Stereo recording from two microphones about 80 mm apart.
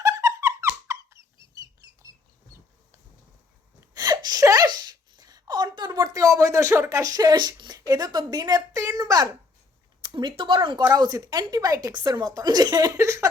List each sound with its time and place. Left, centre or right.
0.0 s squeak: right
3.9 s a sound: right
9.0 s speech: right
10.0 s speech: right
10.9 s speech: right